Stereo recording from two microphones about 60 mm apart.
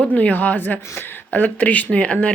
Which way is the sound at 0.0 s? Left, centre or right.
Left.